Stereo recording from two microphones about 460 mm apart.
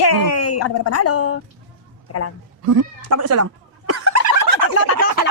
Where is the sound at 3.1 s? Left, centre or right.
Right.